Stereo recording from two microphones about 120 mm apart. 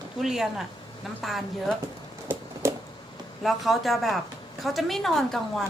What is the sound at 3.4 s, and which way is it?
A woman's voice, centre (ahead or behind).